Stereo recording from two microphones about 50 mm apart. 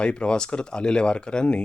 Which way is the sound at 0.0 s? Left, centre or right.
Centre.